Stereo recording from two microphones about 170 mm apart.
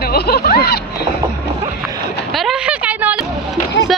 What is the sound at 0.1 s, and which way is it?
Snicker, 65° left (ahead or behind).